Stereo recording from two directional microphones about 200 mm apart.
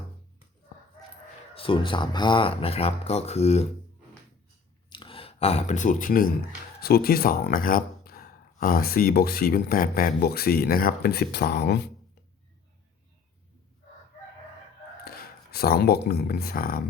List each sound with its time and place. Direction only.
1.5 s speech: 25° left (ahead or behind)
4.9 s speech: 25° left (ahead or behind); by 11.8 s 55° left (ahead or behind)
15.0 s speech: 50° left (ahead or behind)